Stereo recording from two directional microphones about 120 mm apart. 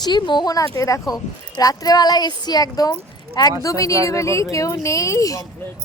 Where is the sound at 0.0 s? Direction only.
40° left (ahead or behind).